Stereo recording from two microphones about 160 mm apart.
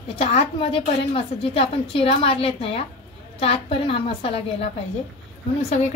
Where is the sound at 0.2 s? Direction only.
40° left (ahead or behind).